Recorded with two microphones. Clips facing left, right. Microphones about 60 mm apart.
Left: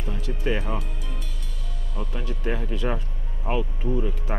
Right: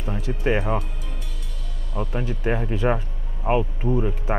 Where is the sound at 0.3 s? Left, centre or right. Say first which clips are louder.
Right 4 dB; right.